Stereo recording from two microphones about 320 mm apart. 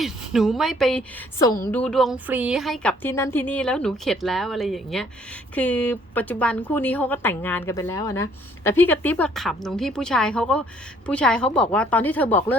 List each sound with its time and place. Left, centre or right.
0.0 s a woman's voice: centre